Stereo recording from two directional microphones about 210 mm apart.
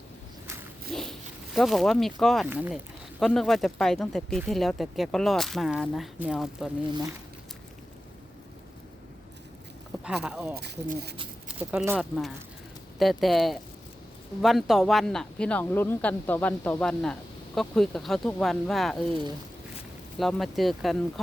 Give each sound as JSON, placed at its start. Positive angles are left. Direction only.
{"t": 0.9, "sound": "zipper", "side_deg": 0}
{"t": 1.5, "sound": "speech", "side_deg": 0}
{"t": 10.0, "sound": "speech", "side_deg": -5}
{"t": 10.6, "sound": "speech", "side_deg": -50}
{"t": 11.7, "sound": "speech", "side_deg": -5}
{"t": 20.1, "sound": "speech", "side_deg": 0}